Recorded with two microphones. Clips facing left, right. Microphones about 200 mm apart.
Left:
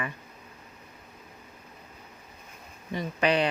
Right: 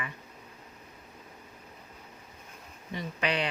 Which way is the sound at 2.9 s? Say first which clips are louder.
Left 6 dB; 40° left (ahead or behind).